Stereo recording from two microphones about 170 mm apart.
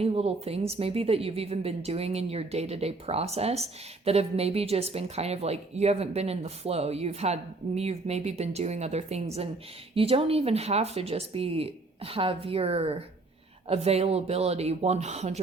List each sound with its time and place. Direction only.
0.0 s a woman's voice: 35° right (ahead or behind)